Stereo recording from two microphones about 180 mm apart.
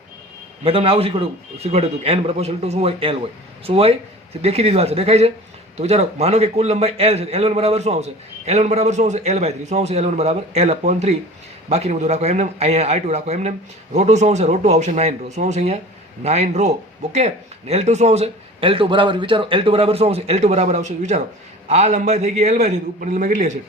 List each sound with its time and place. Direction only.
0.6 s a man's voice: 30° right (ahead or behind)